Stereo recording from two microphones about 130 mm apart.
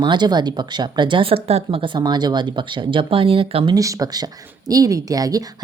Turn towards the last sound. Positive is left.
turn(degrees=-30)  # may be behind; listen again after turning